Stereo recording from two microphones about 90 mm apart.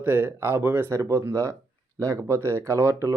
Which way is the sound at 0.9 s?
35° right (ahead or behind).